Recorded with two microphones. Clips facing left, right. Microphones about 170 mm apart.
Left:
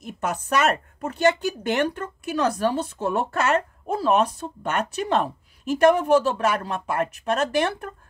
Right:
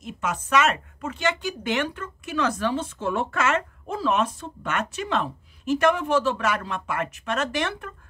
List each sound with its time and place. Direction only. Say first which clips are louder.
0.2 s speech: even; 40° left (ahead or behind)